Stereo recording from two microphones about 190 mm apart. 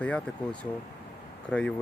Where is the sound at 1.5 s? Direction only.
5° left (ahead or behind).